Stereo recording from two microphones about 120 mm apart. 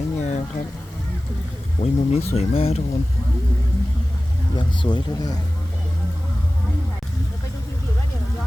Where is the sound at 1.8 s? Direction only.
60° left (ahead or behind).